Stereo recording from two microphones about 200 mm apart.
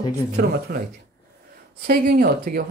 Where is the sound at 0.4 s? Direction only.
50° right (ahead or behind).